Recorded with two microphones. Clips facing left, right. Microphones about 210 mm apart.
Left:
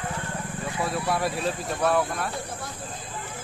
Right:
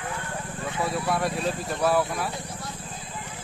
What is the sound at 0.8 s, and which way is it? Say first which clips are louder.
Speech: even; centre (ahead or behind).